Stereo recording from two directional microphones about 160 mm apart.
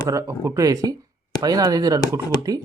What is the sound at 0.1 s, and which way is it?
Speech, 20° right (ahead or behind).